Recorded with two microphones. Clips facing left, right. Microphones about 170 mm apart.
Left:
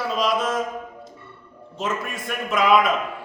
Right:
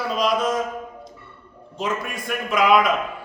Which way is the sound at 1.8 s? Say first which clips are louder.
Right 1 dB; centre (ahead or behind).